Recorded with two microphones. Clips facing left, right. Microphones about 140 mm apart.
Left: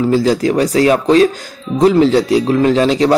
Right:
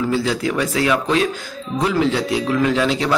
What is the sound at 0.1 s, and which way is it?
Speech, 40° left (ahead or behind).